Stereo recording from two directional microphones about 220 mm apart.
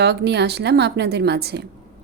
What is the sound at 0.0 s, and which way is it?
A woman's voice, 50° right (ahead or behind).